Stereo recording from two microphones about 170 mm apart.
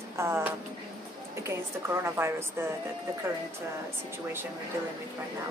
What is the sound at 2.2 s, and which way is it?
Speech, 15° right (ahead or behind).